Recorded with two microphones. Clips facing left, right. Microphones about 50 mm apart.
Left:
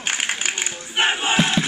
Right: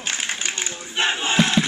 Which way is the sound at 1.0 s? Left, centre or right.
Left.